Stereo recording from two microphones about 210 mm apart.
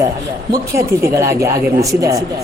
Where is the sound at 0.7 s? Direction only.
15° right (ahead or behind).